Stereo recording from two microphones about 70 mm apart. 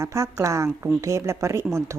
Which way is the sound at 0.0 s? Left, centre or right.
Right.